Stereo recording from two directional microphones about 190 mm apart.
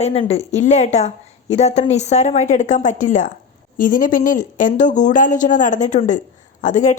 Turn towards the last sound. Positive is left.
turn(degrees=40)  # may be behind; listen again after turning